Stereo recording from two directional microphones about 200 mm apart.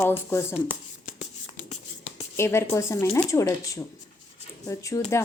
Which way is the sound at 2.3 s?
15° left (ahead or behind).